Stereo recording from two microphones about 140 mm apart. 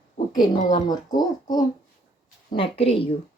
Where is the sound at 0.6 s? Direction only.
60° left (ahead or behind).